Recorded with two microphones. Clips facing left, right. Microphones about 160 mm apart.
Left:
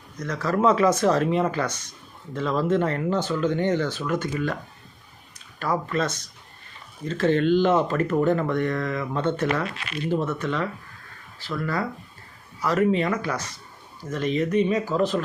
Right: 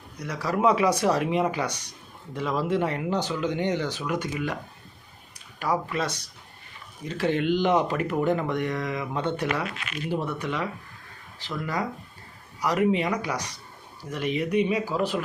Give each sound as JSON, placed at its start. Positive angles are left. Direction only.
{"t": 0.2, "sound": "speech", "side_deg": -10}
{"t": 5.5, "sound": "speech", "side_deg": -10}
{"t": 9.6, "sound": "speech", "side_deg": 35}
{"t": 10.1, "sound": "speech", "side_deg": -15}